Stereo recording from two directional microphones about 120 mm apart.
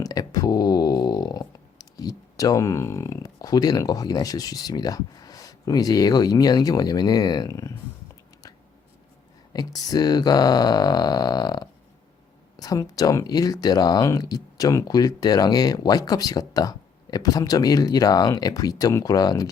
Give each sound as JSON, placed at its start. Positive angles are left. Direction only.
{"t": 0.0, "sound": "speech", "side_deg": 35}
{"t": 9.5, "sound": "speech", "side_deg": 30}